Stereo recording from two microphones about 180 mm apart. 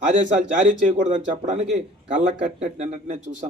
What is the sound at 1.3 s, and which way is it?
Speech, 35° right (ahead or behind).